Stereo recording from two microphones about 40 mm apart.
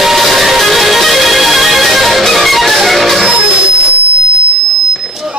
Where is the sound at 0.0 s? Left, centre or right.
Centre.